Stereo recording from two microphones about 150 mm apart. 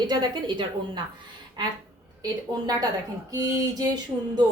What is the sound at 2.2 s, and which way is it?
A woman's voice, 25° right (ahead or behind).